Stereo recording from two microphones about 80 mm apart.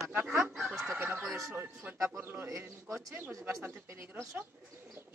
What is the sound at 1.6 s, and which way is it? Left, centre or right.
A man's voice, right.